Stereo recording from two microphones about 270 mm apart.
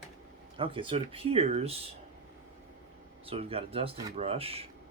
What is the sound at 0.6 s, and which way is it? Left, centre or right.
Speech, centre.